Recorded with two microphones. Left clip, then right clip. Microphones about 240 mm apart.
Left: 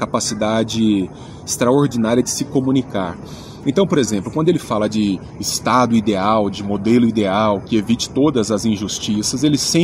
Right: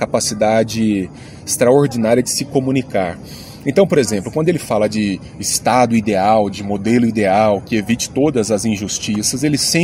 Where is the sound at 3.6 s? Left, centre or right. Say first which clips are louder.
Right 3 dB; centre.